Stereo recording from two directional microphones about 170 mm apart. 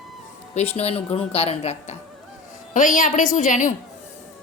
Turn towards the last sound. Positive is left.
turn(degrees=50)  # may be behind; listen again after turning